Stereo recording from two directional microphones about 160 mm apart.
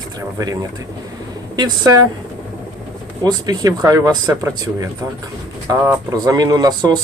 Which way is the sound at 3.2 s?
20° right (ahead or behind).